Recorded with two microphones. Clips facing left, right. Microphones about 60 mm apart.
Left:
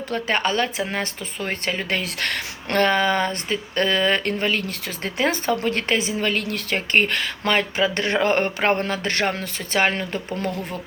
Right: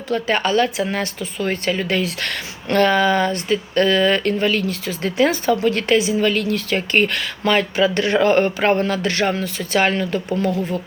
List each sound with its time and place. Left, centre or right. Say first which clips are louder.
0.1 s speech: right 4 dB; left
9.7 s speech: right 3 dB; left